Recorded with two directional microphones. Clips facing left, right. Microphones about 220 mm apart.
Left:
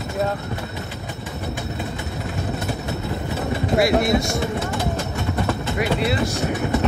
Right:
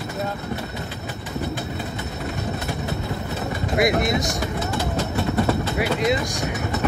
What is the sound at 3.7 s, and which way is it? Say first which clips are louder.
Speech: left 2 dB; 20° right (ahead or behind).